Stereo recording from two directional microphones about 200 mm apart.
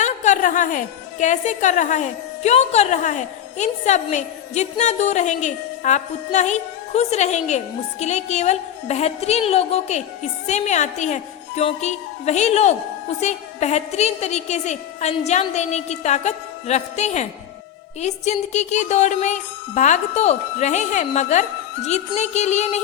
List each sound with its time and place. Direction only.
0.0 s a woman's voice: 40° left (ahead or behind)